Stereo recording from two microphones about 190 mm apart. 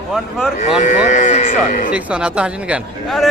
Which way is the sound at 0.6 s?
40° left (ahead or behind).